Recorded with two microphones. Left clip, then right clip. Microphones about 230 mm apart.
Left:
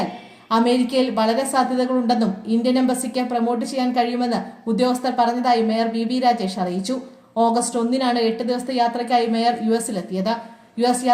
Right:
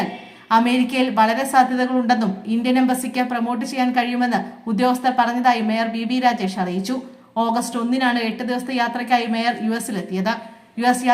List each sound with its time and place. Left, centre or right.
0.5 s a woman's voice: centre